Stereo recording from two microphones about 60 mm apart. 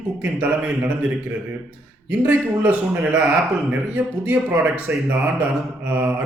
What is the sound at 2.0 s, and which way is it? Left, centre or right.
Speech, right.